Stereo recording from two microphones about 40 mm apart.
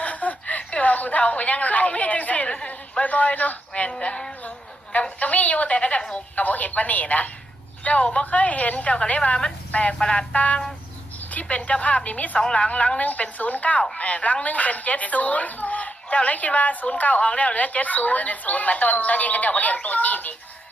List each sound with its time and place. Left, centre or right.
0.0 s chuckle: left
3.0 s speech: left
3.9 s a woman's voice: left
10.0 s a woman's voice: left
10.3 s speech: left
12.4 s a woman's voice: left